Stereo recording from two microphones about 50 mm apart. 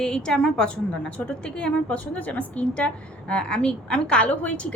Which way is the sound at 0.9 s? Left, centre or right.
Left.